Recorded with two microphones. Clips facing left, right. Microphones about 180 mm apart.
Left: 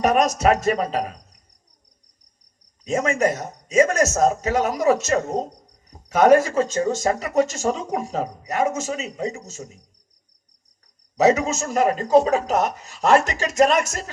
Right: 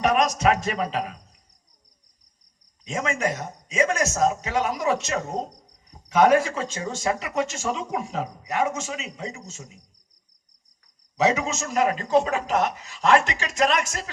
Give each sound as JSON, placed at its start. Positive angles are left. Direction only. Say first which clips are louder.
{"t": 0.0, "sound": "speech", "louder": "left 3 dB", "side_deg": 45}
{"t": 2.8, "sound": "speech", "louder": "left 6 dB", "side_deg": 40}
{"t": 11.2, "sound": "speech", "louder": "left 5 dB", "side_deg": 40}